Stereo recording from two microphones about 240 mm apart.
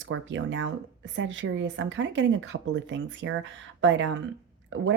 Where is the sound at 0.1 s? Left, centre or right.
Right.